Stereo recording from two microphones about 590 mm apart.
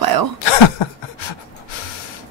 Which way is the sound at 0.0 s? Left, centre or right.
Right.